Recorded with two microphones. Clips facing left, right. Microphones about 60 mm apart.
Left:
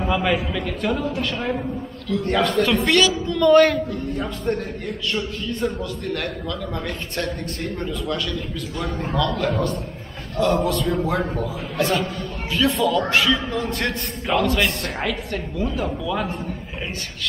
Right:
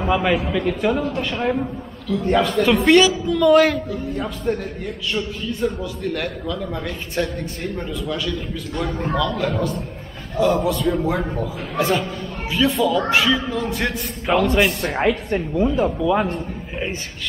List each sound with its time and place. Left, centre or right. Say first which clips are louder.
0.0 s a man's voice: right 2 dB; centre
14.6 s a woman's voice: right 4 dB; centre
15.0 s speech: right 6 dB; right